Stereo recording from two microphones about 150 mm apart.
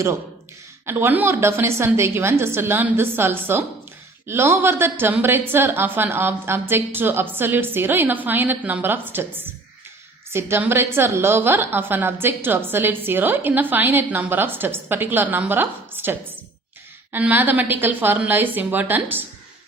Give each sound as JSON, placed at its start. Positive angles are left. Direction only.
{"t": 0.9, "sound": "a woman's voice", "side_deg": -15}
{"t": 10.2, "sound": "a woman's voice", "side_deg": -15}